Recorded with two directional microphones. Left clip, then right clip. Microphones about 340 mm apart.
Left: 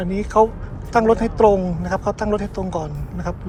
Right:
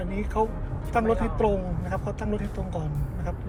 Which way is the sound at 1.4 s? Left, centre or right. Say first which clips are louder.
Left 13 dB; left.